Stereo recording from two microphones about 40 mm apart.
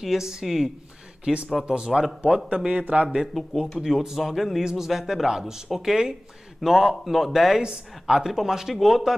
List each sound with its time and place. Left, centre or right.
0.0 s a man's voice: centre
1.2 s speech: right
1.9 s a man's voice: centre
2.9 s a man's voice: right
3.4 s a man's voice: centre
4.2 s a man's voice: centre
7.6 s speech: centre
8.3 s a man's voice: centre